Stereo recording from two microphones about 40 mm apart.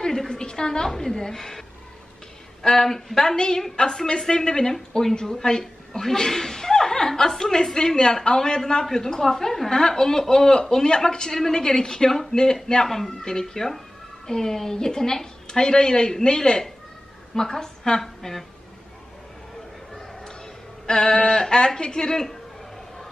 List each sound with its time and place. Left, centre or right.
0.0 s a sound: centre
2.6 s a woman's voice: centre
20.8 s a woman's voice: centre